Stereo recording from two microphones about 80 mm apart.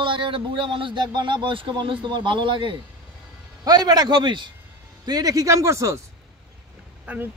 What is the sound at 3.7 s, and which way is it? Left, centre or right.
Speech, right.